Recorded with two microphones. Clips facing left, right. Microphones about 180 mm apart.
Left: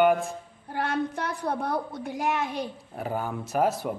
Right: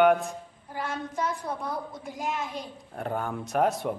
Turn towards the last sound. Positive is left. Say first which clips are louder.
# even
turn(degrees=0)  # may be behind; listen again after turning